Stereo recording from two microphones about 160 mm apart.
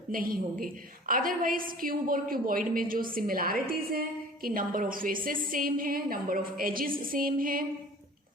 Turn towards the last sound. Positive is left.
turn(degrees=-60)  # may be behind; listen again after turning